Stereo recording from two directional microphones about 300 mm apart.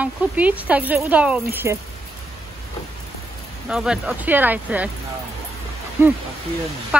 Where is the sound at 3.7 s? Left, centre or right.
Centre.